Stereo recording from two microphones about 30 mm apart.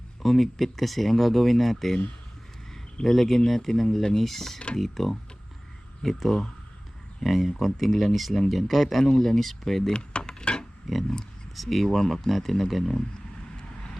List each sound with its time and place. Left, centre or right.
0.2 s speech: centre
3.0 s speech: centre
7.3 s speech: centre
9.9 s a sound: left
10.9 s speech: centre